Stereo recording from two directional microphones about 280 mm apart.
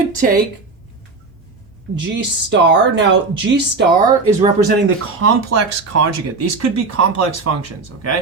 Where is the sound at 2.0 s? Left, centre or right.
Right.